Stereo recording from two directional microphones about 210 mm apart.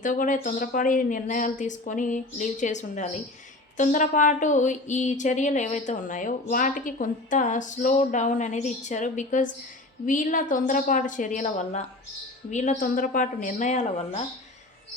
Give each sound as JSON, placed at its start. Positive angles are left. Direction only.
{"t": 0.0, "sound": "speech", "side_deg": 40}